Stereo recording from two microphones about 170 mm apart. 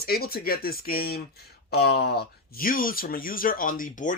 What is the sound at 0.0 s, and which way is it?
Speech, 65° left (ahead or behind).